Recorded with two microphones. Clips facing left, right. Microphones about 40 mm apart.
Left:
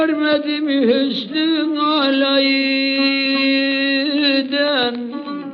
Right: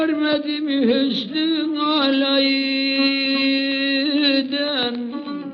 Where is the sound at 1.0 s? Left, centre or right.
Centre.